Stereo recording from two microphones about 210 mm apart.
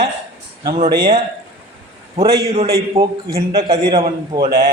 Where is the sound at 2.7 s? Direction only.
20° right (ahead or behind).